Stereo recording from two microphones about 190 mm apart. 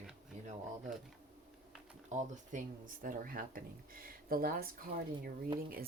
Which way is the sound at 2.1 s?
40° right (ahead or behind).